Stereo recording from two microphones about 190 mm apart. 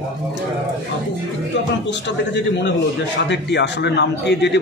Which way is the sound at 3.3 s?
65° left (ahead or behind).